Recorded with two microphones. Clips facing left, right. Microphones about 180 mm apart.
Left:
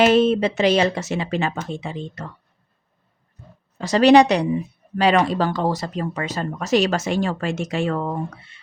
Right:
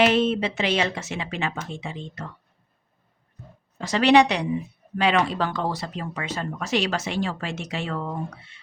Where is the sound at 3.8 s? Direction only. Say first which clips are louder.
Left 5 dB; 40° left (ahead or behind).